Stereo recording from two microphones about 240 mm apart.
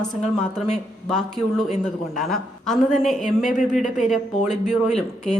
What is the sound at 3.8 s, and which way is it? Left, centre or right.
Speech, left.